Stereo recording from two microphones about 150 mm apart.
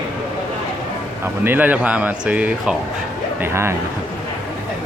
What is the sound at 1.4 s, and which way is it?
Speech, 10° right (ahead or behind).